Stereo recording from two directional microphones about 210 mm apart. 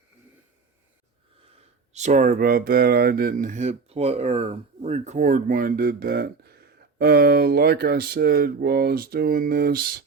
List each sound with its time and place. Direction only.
1.9 s speech: 35° right (ahead or behind)